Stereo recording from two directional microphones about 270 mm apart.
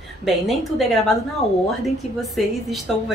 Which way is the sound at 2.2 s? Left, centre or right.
Centre.